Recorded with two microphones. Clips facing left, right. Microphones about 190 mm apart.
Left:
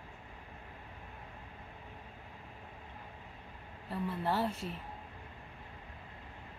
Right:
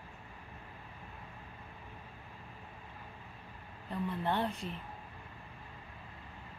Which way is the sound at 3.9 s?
5° left (ahead or behind).